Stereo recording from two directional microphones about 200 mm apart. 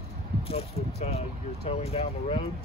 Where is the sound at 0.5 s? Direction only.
30° left (ahead or behind).